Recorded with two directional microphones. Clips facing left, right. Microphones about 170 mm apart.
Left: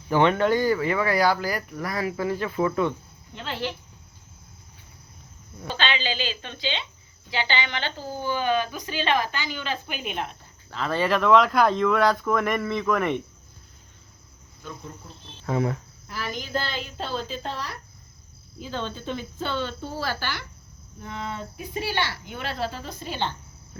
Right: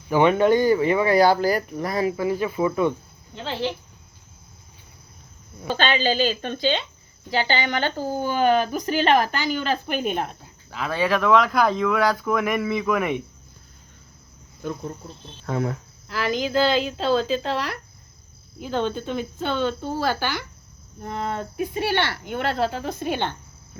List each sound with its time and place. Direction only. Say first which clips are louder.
0.1 s speech: right 3 dB; 15° right (ahead or behind)
5.6 s a woman's voice: right 6 dB; 45° right (ahead or behind)
10.7 s speech: right 1 dB; 5° right (ahead or behind)
14.6 s cricket: right 9 dB; 40° right (ahead or behind)
15.4 s speech: even; centre (ahead or behind)
16.0 s speech: right 9 dB; 90° right
18.6 s speech: right 6 dB; 60° right (ahead or behind)